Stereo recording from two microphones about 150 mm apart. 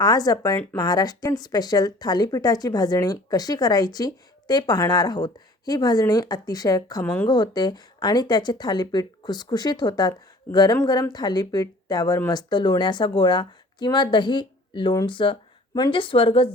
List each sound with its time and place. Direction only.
0.0 s speech: 25° left (ahead or behind)
7.0 s speech: 10° left (ahead or behind)
7.3 s speech: 30° left (ahead or behind)